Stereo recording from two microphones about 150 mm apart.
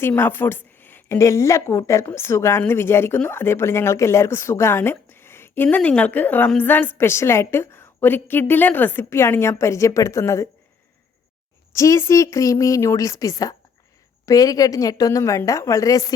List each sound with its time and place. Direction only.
0.0 s a woman's voice: 15° left (ahead or behind)
11.7 s a woman's voice: 20° left (ahead or behind)